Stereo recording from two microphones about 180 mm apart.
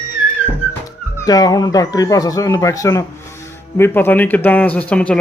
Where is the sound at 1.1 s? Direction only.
20° left (ahead or behind).